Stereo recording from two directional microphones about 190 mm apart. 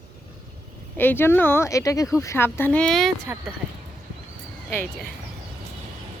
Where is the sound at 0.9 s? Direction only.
10° left (ahead or behind).